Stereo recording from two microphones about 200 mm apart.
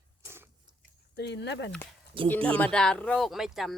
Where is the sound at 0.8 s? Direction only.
55° left (ahead or behind).